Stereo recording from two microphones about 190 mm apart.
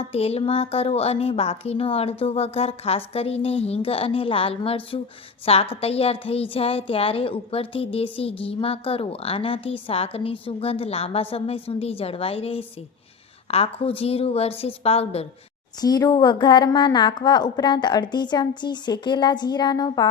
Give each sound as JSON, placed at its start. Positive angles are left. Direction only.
{"t": 0.0, "sound": "a woman's voice", "side_deg": 30}
{"t": 15.8, "sound": "a woman's voice", "side_deg": 20}